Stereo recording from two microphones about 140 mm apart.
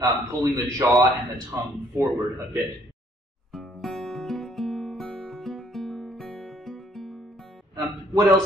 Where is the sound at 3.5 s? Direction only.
Centre (ahead or behind).